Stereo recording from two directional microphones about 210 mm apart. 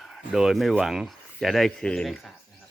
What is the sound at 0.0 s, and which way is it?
Speech, centre (ahead or behind).